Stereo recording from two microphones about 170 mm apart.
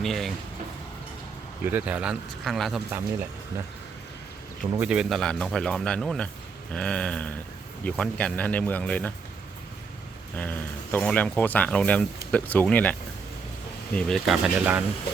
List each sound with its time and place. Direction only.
0.0 s a man's voice: centre (ahead or behind)
1.6 s a man's voice: 10° right (ahead or behind)
4.8 s a man's voice: 5° right (ahead or behind)
10.3 s a man's voice: 10° left (ahead or behind); by 14.8 s 10° right (ahead or behind)